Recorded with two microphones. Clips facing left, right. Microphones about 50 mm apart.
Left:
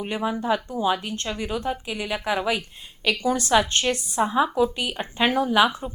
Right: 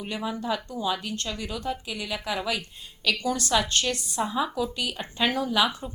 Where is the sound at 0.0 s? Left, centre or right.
Left.